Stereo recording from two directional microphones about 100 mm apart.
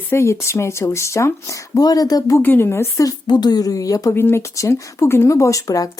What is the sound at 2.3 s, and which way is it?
A woman's voice, 20° left (ahead or behind).